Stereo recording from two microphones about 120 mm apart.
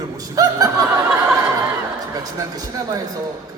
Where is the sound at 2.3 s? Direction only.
30° right (ahead or behind).